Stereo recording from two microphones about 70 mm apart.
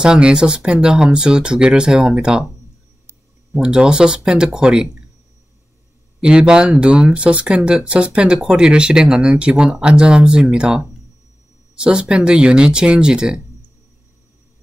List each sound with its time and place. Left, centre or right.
0.0 s speech: centre
3.5 s speech: centre
6.2 s speech: centre